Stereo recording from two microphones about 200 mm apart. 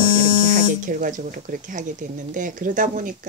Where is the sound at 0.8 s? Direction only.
40° right (ahead or behind).